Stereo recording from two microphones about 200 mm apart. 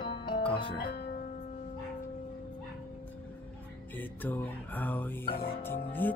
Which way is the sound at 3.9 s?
10° left (ahead or behind).